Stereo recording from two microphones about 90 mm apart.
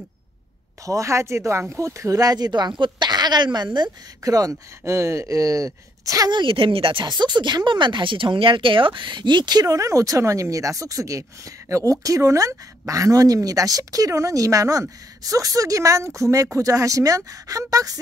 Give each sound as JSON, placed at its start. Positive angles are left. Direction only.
{"t": 0.8, "sound": "speech", "side_deg": -35}
{"t": 4.2, "sound": "speech", "side_deg": -40}
{"t": 6.3, "sound": "speech", "side_deg": -75}